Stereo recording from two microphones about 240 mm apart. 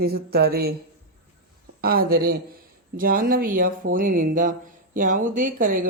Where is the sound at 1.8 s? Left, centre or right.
Right.